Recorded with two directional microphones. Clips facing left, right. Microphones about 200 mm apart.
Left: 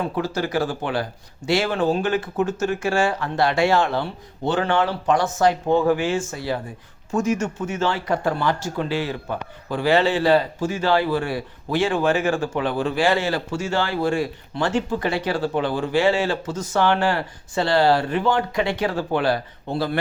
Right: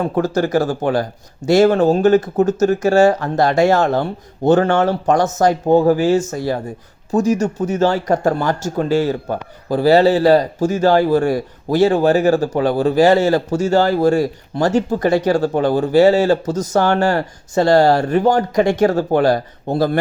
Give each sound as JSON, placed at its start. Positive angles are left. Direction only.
{"t": 0.0, "sound": "speech", "side_deg": -45}